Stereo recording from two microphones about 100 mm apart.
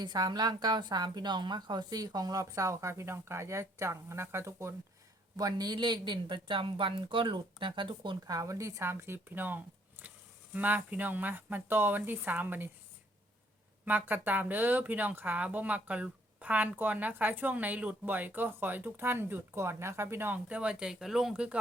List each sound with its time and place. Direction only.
0.0 s a woman's voice: 45° right (ahead or behind); by 4.7 s 30° right (ahead or behind)
5.4 s speech: 40° right (ahead or behind)
8.3 s speech: 35° right (ahead or behind)
13.8 s speech: 20° right (ahead or behind)